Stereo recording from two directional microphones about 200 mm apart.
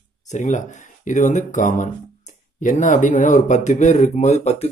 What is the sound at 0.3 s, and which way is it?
Speech, 35° left (ahead or behind).